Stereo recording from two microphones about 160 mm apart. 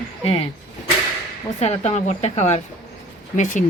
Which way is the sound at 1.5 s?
45° left (ahead or behind).